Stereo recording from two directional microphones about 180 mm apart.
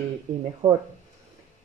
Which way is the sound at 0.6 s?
20° right (ahead or behind).